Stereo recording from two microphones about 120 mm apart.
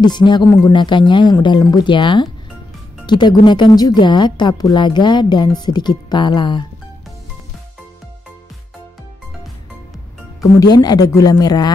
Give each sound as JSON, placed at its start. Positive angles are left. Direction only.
{"t": 0.0, "sound": "a woman's voice", "side_deg": 40}
{"t": 10.4, "sound": "a woman's voice", "side_deg": 35}